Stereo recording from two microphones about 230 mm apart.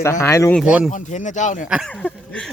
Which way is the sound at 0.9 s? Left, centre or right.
Left.